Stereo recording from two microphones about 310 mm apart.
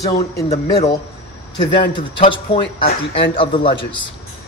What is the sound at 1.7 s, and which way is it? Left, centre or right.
A man's voice, centre.